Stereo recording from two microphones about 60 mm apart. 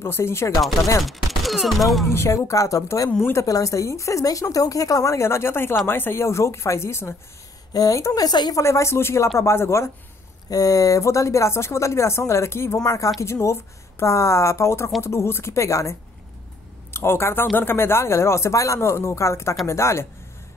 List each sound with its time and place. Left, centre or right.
0.0 s speech: left
1.0 s speech: centre
2.0 s speech: left
7.7 s a woman's voice: left
8.6 s speech: left
10.5 s speech: left
12.7 s speech: left
13.2 s speech: left
16.9 s speech: left